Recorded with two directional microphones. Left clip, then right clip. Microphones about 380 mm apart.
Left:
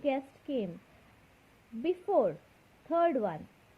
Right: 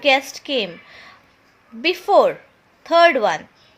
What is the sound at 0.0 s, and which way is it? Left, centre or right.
Speech, centre.